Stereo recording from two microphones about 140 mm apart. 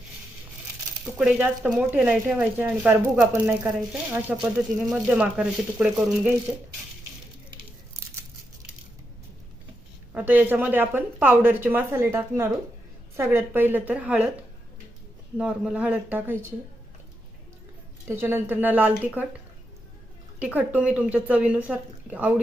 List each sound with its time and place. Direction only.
1.0 s speech: 10° right (ahead or behind)
6.5 s speech: 20° right (ahead or behind)
10.2 s speech: 15° right (ahead or behind)
15.4 s speech: 5° right (ahead or behind)
18.2 s speech: 15° right (ahead or behind)
20.4 s speech: 10° right (ahead or behind)